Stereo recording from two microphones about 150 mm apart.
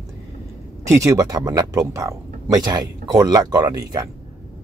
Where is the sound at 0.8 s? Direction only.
20° right (ahead or behind).